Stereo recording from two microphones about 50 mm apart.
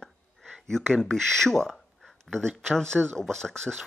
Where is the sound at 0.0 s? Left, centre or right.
Centre.